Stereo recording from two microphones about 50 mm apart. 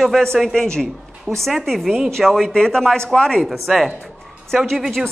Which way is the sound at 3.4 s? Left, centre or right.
Centre.